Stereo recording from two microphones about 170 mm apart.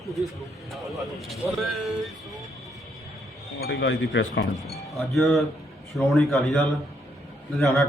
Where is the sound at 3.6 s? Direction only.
90° left.